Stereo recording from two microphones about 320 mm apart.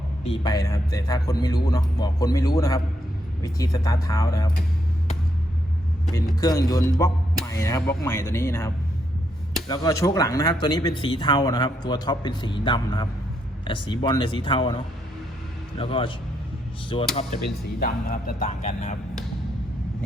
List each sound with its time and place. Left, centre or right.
0.3 s speech: centre
6.1 s speech: centre
15.8 s speech: centre
17.2 s speech: left